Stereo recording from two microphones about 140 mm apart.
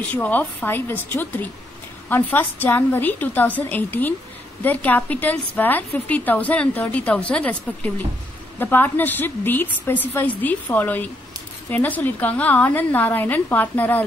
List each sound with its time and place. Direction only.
0.1 s a woman's voice: 10° left (ahead or behind)